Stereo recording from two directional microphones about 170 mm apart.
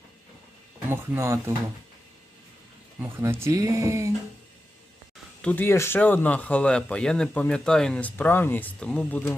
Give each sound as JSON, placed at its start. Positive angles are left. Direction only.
{"t": 0.9, "sound": "speech", "side_deg": -15}
{"t": 3.0, "sound": "speech", "side_deg": -15}
{"t": 5.4, "sound": "speech", "side_deg": 10}